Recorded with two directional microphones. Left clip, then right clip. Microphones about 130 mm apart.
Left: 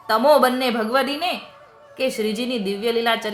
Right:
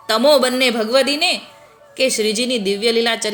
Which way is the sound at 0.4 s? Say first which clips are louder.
Right 3 dB; 35° right (ahead or behind).